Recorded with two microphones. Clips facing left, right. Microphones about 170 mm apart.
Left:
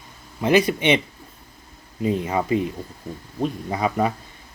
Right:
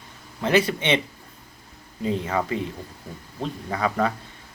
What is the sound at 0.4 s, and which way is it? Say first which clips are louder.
Speech: left 3 dB; 15° left (ahead or behind).